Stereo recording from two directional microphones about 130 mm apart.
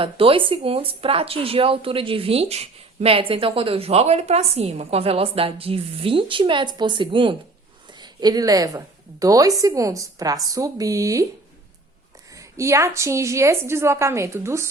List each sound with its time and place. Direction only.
0.0 s a woman's voice: 45° right (ahead or behind); by 11.3 s 25° right (ahead or behind)
12.3 s a woman's voice: 25° right (ahead or behind)